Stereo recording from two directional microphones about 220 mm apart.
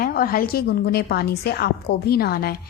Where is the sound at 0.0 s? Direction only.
40° left (ahead or behind).